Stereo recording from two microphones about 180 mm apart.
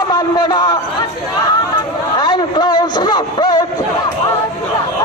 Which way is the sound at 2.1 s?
25° left (ahead or behind).